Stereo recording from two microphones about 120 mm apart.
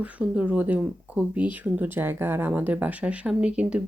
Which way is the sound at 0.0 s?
10° right (ahead or behind).